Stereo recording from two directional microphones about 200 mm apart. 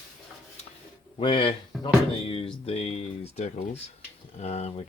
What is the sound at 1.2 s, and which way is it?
Speech, 25° left (ahead or behind).